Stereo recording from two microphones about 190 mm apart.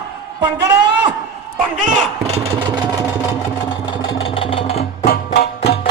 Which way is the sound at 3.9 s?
25° left (ahead or behind).